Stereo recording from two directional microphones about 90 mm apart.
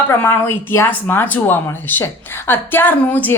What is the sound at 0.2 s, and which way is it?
Speech, 25° left (ahead or behind).